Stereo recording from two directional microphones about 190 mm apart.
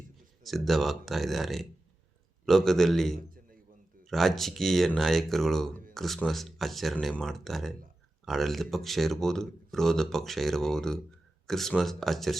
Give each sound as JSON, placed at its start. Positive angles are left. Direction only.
{"t": 0.4, "sound": "speech", "side_deg": 0}
{"t": 3.2, "sound": "a sound", "side_deg": -50}
{"t": 4.0, "sound": "speech", "side_deg": 0}